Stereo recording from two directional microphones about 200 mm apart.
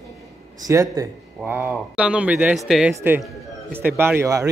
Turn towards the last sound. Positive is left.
turn(degrees=-15)  # may be behind; listen again after turning